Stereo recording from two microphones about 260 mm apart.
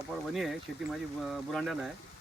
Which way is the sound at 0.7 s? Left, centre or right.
Centre.